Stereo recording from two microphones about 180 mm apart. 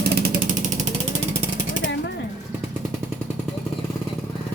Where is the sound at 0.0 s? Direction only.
65° right (ahead or behind).